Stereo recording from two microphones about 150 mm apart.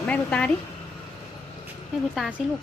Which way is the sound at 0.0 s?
10° left (ahead or behind).